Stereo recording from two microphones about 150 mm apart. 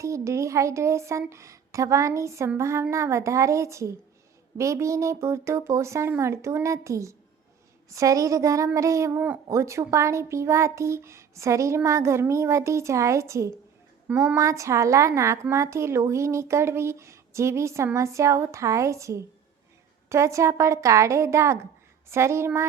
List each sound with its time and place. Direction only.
0.0 s a woman's voice: 20° right (ahead or behind)